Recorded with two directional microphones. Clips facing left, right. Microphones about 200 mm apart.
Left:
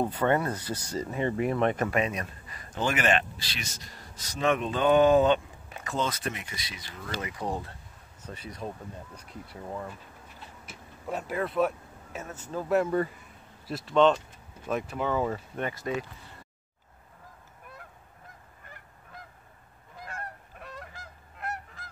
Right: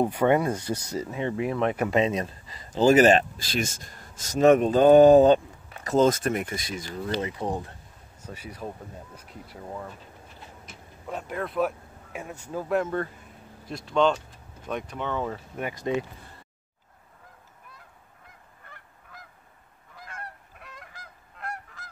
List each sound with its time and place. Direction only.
0.0 s speech: 10° right (ahead or behind)
0.6 s speech: 20° right (ahead or behind)
1.1 s speech: centre (ahead or behind)
1.9 s speech: 25° right (ahead or behind); by 7.0 s 45° right (ahead or behind)
7.0 s speech: 25° right (ahead or behind)
8.2 s speech: 10° right (ahead or behind)
10.6 s vehicle: 5° left (ahead or behind)
12.1 s speech: 15° right (ahead or behind)
12.6 s speech: 5° left (ahead or behind)
15.7 s speech: 20° right (ahead or behind)
20.1 s goose: 40° left (ahead or behind)